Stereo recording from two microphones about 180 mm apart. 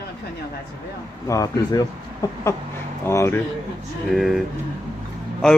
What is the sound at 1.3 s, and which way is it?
Speech, 20° left (ahead or behind).